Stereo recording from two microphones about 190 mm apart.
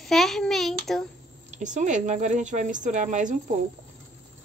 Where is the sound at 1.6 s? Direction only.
40° right (ahead or behind).